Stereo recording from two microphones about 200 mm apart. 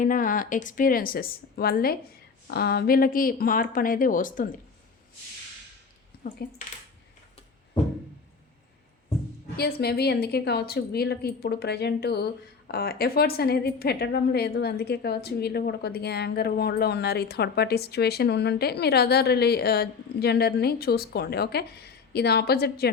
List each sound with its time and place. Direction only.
0.0 s a woman's voice: 40° left (ahead or behind)
9.6 s a woman's voice: 50° left (ahead or behind)